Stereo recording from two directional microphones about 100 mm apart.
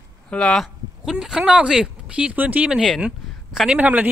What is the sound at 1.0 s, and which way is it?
A man's voice, 5° right (ahead or behind).